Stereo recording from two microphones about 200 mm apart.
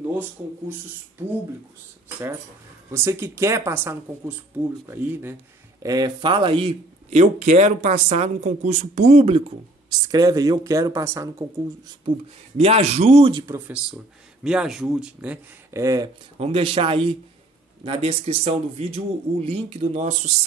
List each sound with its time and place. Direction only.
0.2 s speech: 10° right (ahead or behind)
2.9 s speech: 10° right (ahead or behind); by 9.4 s 30° right (ahead or behind)
9.8 s speech: 20° right (ahead or behind)
12.5 s speech: 30° right (ahead or behind)
14.4 s speech: 5° right (ahead or behind)
15.7 s speech: 15° right (ahead or behind)
16.3 s speech: 30° right (ahead or behind)